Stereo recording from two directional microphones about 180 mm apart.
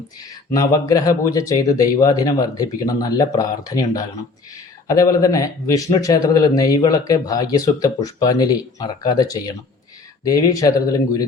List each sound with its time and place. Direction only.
0.5 s speech: 20° left (ahead or behind)